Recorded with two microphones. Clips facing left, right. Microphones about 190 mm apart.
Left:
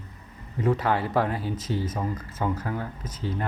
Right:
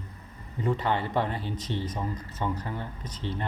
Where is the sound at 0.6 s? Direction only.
5° left (ahead or behind).